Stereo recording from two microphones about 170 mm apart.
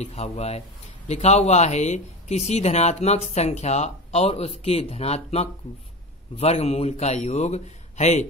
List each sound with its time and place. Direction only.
0.0 s a man's voice: 40° left (ahead or behind)